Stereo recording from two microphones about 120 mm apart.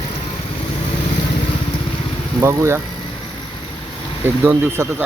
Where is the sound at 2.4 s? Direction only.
25° right (ahead or behind).